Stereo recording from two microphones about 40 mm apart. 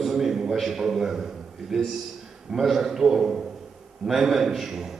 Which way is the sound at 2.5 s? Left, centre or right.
Centre.